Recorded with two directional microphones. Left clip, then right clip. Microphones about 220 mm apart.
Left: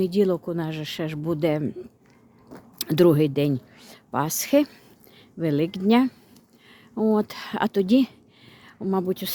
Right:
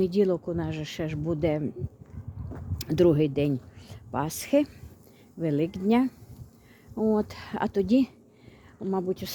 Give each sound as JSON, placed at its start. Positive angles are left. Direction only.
{"t": 0.0, "sound": "speech", "side_deg": 10}